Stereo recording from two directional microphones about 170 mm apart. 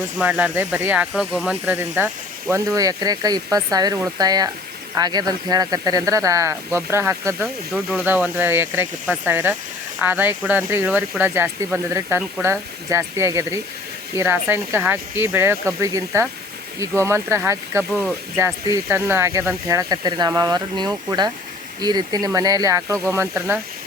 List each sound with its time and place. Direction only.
0.2 s speech: 10° right (ahead or behind)
7.4 s speech: 5° right (ahead or behind)